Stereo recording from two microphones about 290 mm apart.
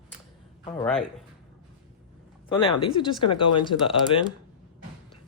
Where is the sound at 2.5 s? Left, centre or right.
Centre.